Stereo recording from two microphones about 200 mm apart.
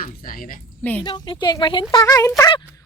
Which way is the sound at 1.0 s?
25° left (ahead or behind).